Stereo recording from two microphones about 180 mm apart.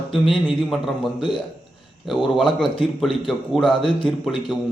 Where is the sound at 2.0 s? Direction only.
Centre (ahead or behind).